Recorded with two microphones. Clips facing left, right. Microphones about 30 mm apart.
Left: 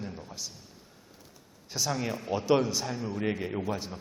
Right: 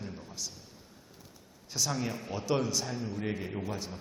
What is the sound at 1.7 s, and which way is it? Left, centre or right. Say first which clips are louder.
A man's voice: left 2 dB; centre.